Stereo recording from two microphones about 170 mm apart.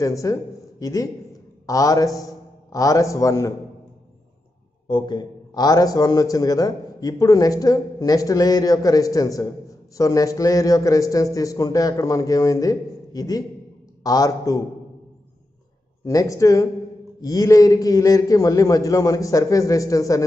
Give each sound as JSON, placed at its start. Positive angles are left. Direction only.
{"t": 0.0, "sound": "a man's voice", "side_deg": 20}
{"t": 4.8, "sound": "a man's voice", "side_deg": 25}
{"t": 16.1, "sound": "a man's voice", "side_deg": 20}